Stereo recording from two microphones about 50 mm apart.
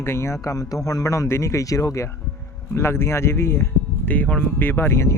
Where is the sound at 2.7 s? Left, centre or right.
Left.